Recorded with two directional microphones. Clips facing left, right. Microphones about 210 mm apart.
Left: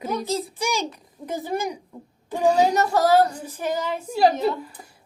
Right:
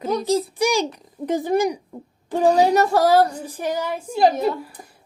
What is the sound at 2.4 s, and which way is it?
Speech, 35° right (ahead or behind).